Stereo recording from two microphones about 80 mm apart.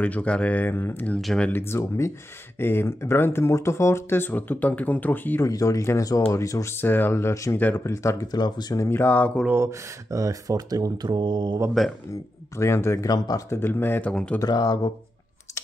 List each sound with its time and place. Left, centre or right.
0.0 s speech: centre
1.2 s speech: centre
1.5 s speech: left
5.5 s speech: left
6.8 s speech: left
8.3 s speech: left
8.7 s speech: left
9.5 s speech: right
12.1 s speech: left
14.1 s speech: centre
14.4 s speech: left